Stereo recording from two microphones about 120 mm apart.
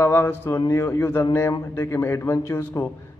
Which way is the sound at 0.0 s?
20° left (ahead or behind).